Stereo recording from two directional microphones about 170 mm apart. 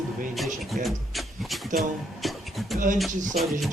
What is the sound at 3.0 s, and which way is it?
Speech, centre (ahead or behind).